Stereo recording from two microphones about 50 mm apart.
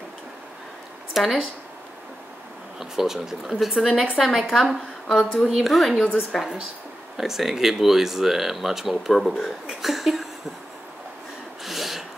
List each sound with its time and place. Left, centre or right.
1.1 s speech: centre
2.8 s speech: centre
4.5 s speech: centre
11.6 s a sound: centre